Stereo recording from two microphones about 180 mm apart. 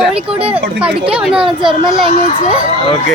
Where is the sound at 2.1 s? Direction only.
40° left (ahead or behind).